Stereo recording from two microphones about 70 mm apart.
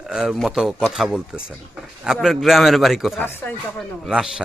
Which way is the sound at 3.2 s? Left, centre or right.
Left.